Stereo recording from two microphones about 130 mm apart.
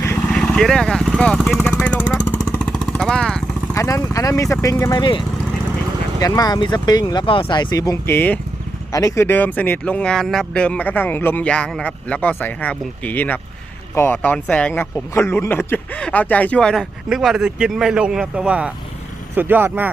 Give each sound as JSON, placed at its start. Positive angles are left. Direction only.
{"t": 0.2, "sound": "speech", "side_deg": 5}
{"t": 1.8, "sound": "vehicle", "side_deg": 10}
{"t": 3.8, "sound": "a man's voice", "side_deg": 25}